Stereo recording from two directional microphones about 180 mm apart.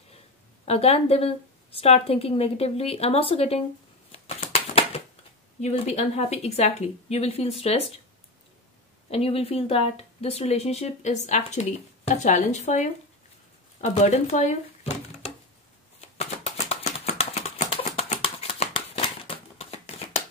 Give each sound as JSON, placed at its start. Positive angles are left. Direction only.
{"t": 0.7, "sound": "speech", "side_deg": 35}
{"t": 4.1, "sound": "typewriter", "side_deg": 35}
{"t": 5.6, "sound": "speech", "side_deg": 35}
{"t": 9.1, "sound": "speech", "side_deg": 35}
{"t": 16.2, "sound": "a sound", "side_deg": 35}